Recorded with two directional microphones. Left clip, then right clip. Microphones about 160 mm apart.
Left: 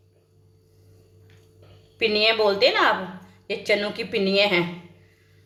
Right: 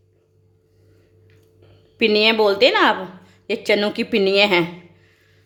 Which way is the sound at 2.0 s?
70° right (ahead or behind).